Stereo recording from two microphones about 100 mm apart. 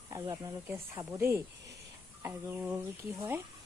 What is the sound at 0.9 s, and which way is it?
Speech, 30° right (ahead or behind).